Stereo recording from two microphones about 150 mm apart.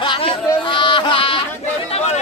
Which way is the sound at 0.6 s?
30° left (ahead or behind).